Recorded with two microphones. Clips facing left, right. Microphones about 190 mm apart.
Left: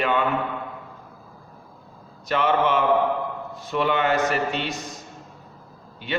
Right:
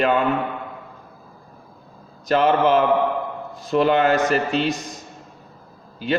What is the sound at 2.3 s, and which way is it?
A man's voice, 40° right (ahead or behind).